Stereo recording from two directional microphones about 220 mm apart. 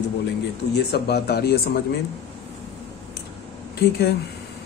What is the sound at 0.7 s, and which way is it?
A man's voice, 50° left (ahead or behind).